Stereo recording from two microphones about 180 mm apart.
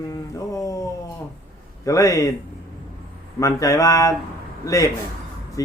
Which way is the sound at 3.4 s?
20° left (ahead or behind).